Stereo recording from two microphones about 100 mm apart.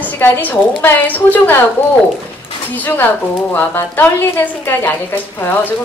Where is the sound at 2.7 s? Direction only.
20° left (ahead or behind).